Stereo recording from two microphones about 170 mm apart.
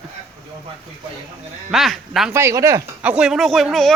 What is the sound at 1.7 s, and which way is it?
Speech, centre (ahead or behind).